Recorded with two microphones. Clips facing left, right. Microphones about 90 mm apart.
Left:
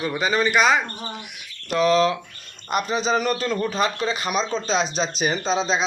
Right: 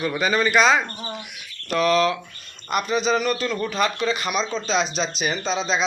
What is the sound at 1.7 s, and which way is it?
Speech, 25° left (ahead or behind).